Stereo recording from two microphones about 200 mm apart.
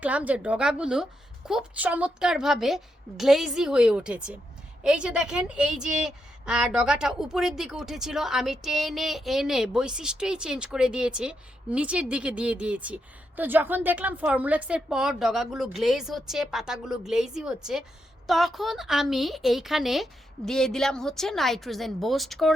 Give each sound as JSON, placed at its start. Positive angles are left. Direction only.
{"t": 0.0, "sound": "a woman's voice", "side_deg": -5}